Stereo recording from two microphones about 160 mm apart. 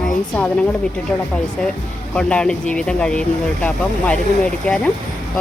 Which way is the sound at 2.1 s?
5° left (ahead or behind).